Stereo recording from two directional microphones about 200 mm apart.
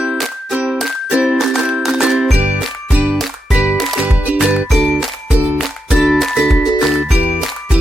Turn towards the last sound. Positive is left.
turn(degrees=-5)  # may be behind; listen again after turning